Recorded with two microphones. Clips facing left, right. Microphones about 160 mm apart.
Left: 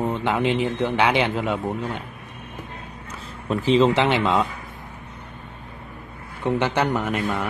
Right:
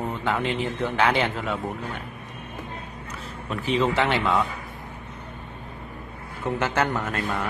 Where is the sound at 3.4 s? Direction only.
25° left (ahead or behind).